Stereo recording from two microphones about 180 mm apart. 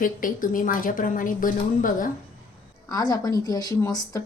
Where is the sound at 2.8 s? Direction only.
20° left (ahead or behind).